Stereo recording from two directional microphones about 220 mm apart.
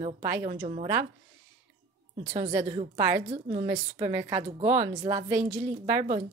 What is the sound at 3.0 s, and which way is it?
A woman's voice, 10° right (ahead or behind).